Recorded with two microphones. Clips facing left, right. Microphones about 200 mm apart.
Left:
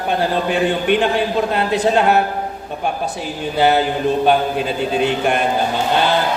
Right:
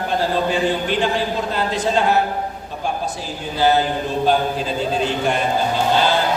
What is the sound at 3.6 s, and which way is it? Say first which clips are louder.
A man's voice: left 2 dB; 65° left (ahead or behind).